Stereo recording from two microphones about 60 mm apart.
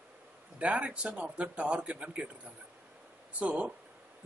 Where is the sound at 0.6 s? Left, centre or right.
Centre.